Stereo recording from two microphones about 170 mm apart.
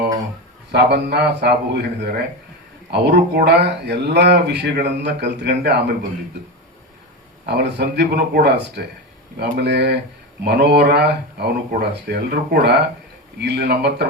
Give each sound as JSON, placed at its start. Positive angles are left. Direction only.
{"t": 0.7, "sound": "speech", "side_deg": -75}
{"t": 7.4, "sound": "speech", "side_deg": -80}
{"t": 13.4, "sound": "speech", "side_deg": -80}